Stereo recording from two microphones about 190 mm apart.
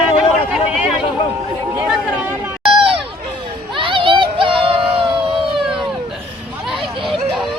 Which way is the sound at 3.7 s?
25° right (ahead or behind).